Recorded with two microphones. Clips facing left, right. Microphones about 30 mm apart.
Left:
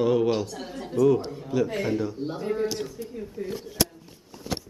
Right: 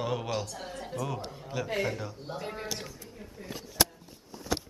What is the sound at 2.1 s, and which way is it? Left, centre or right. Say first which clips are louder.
Speech: left 8 dB; centre.